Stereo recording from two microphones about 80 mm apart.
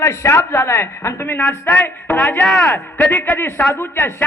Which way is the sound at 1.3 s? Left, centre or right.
Left.